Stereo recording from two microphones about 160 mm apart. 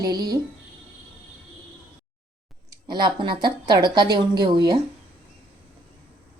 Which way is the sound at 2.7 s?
30° right (ahead or behind).